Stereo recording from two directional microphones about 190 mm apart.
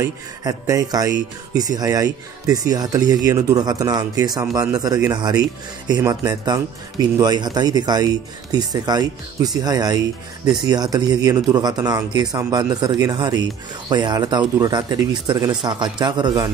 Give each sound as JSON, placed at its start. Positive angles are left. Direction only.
{"t": 0.0, "sound": "speech", "side_deg": -15}